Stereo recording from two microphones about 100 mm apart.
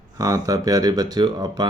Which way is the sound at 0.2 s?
35° right (ahead or behind).